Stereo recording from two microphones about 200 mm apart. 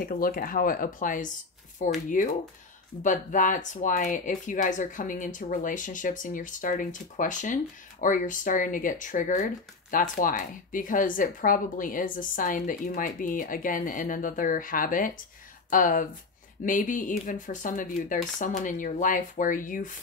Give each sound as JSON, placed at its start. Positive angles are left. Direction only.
{"t": 0.0, "sound": "speech", "side_deg": 45}